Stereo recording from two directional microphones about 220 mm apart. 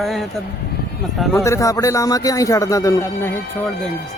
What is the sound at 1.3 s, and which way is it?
A man's voice, 15° left (ahead or behind).